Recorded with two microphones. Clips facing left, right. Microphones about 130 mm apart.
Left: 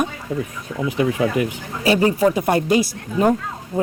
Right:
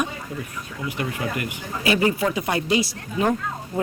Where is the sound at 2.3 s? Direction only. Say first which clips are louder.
Left 5 dB; 45° left (ahead or behind).